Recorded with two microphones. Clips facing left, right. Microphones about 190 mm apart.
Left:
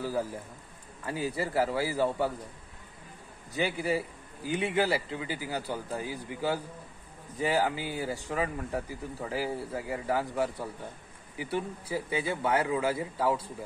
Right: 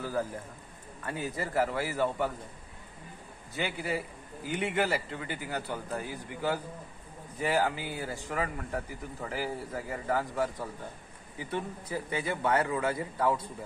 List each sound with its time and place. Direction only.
0.0 s a man's voice: 10° left (ahead or behind)
3.5 s speech: 15° left (ahead or behind)